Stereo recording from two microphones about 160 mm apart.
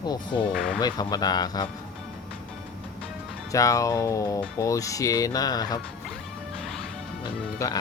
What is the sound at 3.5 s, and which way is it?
Speech, 20° left (ahead or behind).